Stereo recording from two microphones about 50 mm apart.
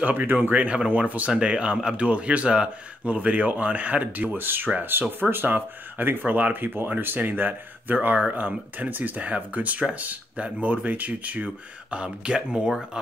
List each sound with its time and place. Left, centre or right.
0.0 s speech: right; by 12.7 s centre